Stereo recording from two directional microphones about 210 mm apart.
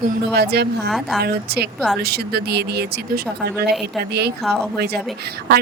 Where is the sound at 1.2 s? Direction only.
50° right (ahead or behind).